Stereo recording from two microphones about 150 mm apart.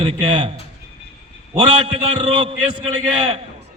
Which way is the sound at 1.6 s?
30° right (ahead or behind).